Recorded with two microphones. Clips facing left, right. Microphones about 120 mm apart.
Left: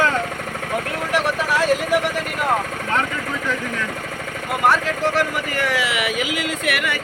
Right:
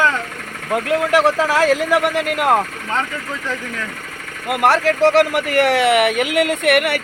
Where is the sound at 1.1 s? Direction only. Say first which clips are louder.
Right 4 dB; 90° right.